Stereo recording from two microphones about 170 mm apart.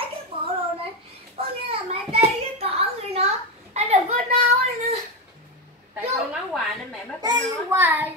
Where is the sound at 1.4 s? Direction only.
35° right (ahead or behind).